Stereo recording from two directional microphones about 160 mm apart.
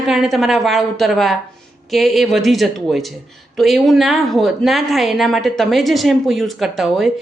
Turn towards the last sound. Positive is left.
turn(degrees=0)  # may be behind; listen again after turning